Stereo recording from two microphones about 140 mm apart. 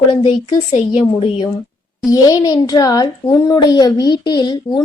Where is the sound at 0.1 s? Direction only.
40° left (ahead or behind).